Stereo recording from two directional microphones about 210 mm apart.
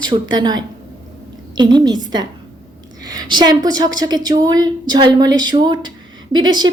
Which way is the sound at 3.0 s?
20° right (ahead or behind).